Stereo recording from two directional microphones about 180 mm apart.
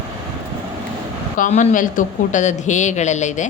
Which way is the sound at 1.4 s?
40° left (ahead or behind).